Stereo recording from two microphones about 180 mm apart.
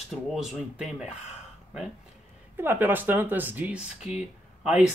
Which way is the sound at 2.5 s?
10° right (ahead or behind).